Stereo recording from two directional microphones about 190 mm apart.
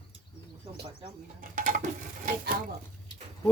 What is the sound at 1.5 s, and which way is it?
Dishes, 40° right (ahead or behind).